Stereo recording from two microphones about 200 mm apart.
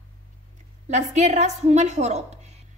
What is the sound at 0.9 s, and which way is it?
A woman's voice, 35° right (ahead or behind).